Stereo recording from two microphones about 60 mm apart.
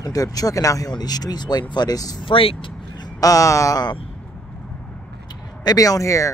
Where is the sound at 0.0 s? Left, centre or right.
Left.